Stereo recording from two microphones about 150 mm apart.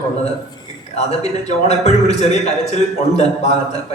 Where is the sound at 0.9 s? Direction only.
45° left (ahead or behind).